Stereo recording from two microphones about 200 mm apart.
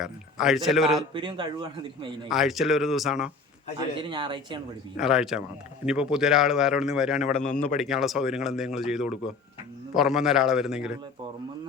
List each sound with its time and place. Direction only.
0.0 s a man's voice: centre (ahead or behind)
1.1 s speech: 25° right (ahead or behind)
2.3 s speech: centre (ahead or behind)
3.8 s speech: 20° right (ahead or behind)
4.9 s speech: centre (ahead or behind)
7.4 s speech: 40° left (ahead or behind)
7.8 s speech: centre (ahead or behind)